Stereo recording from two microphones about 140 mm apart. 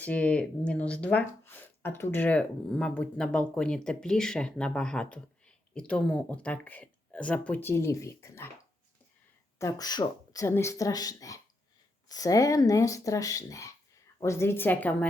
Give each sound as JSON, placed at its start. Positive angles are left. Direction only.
{"t": 0.0, "sound": "speech", "side_deg": 10}
{"t": 9.6, "sound": "speech", "side_deg": 25}